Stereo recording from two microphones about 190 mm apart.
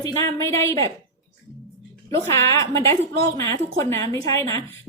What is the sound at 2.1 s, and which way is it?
A woman's voice, 15° left (ahead or behind).